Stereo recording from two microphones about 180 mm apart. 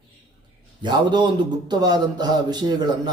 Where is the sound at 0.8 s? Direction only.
25° right (ahead or behind).